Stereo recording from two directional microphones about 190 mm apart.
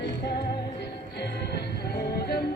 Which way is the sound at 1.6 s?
60° left (ahead or behind).